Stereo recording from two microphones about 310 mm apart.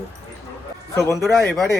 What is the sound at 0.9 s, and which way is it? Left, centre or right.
Speech, centre.